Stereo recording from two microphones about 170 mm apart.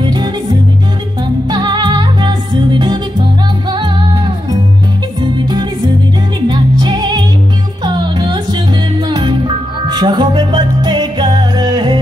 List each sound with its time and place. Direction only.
0.0 s music: 25° right (ahead or behind)
1.5 s music: 25° right (ahead or behind)
6.4 s music: 25° right (ahead or behind)